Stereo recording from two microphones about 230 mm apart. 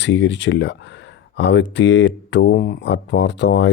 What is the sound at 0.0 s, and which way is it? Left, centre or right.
Speech, left.